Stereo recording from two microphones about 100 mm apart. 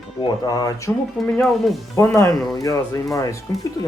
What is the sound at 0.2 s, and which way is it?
Speech, 45° left (ahead or behind).